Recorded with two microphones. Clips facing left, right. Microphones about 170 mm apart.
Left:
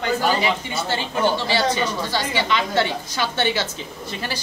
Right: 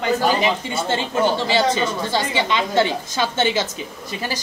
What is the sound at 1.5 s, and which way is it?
A woman's voice, 20° right (ahead or behind).